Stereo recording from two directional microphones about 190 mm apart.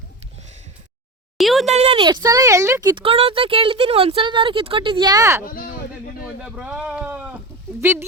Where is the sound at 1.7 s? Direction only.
30° right (ahead or behind); by 5.4 s 15° right (ahead or behind).